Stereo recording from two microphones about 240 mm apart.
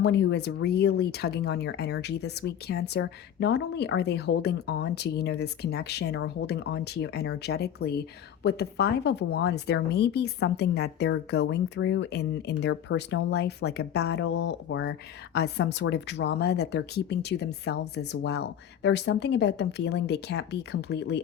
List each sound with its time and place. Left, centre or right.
0.0 s speech: left